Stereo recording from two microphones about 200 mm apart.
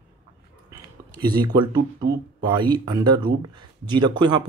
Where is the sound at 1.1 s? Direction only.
20° right (ahead or behind).